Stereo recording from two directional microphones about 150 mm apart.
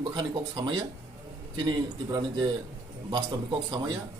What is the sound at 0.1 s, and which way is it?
A man's voice, 30° right (ahead or behind).